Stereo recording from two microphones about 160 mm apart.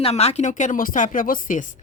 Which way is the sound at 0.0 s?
40° left (ahead or behind).